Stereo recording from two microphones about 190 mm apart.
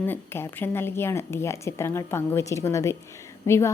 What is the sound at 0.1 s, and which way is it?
A woman's voice, 10° left (ahead or behind).